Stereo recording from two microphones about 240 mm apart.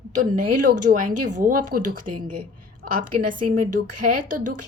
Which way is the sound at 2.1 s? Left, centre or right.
Right.